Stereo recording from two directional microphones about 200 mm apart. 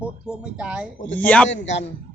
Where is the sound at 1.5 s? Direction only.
65° left (ahead or behind).